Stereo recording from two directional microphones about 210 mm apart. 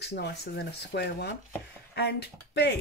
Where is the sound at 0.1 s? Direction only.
50° left (ahead or behind).